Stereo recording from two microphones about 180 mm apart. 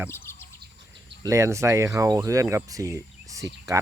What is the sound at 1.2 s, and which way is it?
Speech, 15° right (ahead or behind).